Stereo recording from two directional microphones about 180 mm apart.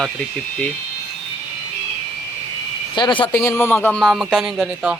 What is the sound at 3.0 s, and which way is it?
Speech, 25° left (ahead or behind).